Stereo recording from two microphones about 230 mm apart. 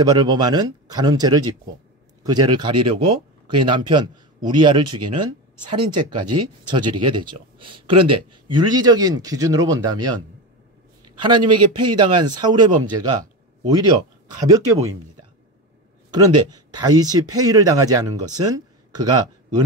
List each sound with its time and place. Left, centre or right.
0.0 s speech: centre
6.1 s speech: right
6.4 s speech: centre
11.1 s speech: centre
14.4 s speech: centre
16.1 s speech: centre